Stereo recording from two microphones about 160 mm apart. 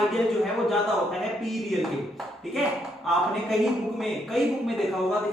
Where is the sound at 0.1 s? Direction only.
Centre (ahead or behind).